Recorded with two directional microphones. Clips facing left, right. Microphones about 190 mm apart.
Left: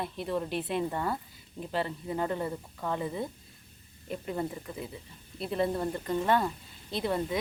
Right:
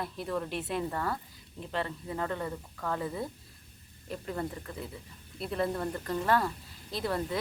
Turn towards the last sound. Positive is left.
turn(degrees=15)  # may be behind; listen again after turning